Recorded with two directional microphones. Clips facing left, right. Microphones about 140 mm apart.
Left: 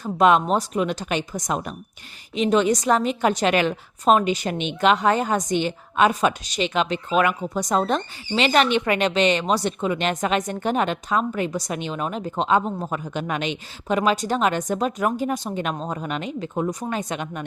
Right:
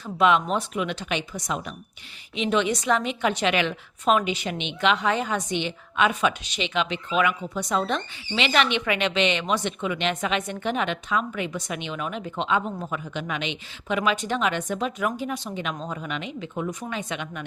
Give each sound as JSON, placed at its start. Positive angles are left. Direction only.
{"t": 0.0, "sound": "a woman's voice", "side_deg": 45}